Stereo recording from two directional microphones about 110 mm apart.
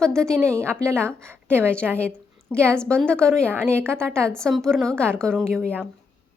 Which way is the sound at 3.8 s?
20° right (ahead or behind).